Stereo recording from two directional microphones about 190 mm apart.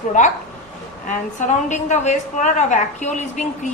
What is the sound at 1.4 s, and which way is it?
A woman's voice, 40° left (ahead or behind).